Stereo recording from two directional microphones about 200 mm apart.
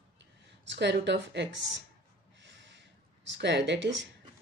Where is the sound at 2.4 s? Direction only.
60° right (ahead or behind).